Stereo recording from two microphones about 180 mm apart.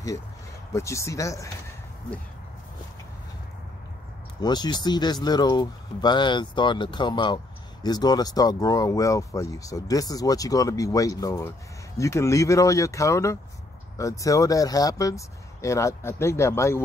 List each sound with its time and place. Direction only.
0.7 s speech: 15° left (ahead or behind)
4.4 s speech: 25° left (ahead or behind)